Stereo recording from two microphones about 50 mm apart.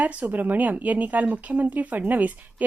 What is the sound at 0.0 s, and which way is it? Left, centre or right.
A woman's voice, right.